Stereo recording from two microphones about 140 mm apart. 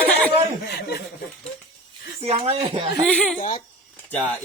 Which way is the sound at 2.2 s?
45° right (ahead or behind).